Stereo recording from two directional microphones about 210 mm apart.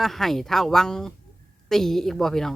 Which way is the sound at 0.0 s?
Centre (ahead or behind).